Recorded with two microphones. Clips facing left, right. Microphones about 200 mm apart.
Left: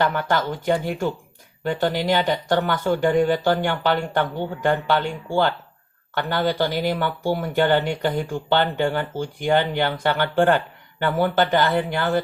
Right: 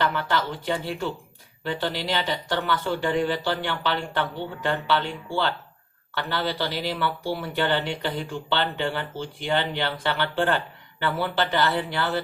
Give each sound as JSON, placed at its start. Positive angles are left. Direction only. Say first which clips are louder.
{"t": 0.3, "sound": "speech", "louder": "left 5 dB", "side_deg": 45}